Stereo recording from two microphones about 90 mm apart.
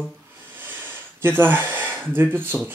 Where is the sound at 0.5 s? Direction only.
20° right (ahead or behind).